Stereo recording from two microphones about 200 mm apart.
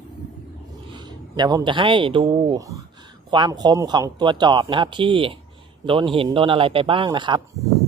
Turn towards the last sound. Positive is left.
turn(degrees=-20)  # may be behind; listen again after turning